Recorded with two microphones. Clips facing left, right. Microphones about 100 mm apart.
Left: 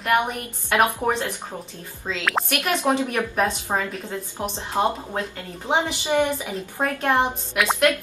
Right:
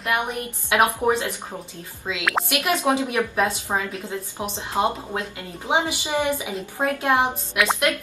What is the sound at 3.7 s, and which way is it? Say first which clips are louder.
Speech: left 1 dB; 10° left (ahead or behind).